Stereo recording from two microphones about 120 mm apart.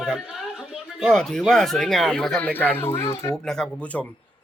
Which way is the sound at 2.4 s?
15° left (ahead or behind).